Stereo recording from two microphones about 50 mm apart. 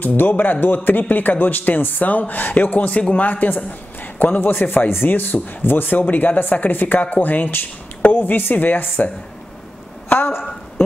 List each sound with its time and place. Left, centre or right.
0.0 s a woman's voice: left